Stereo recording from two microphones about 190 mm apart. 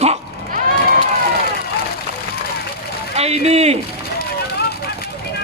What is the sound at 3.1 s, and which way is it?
Speech, 35° right (ahead or behind).